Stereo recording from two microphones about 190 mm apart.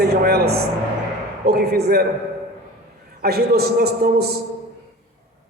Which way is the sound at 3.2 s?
55° right (ahead or behind).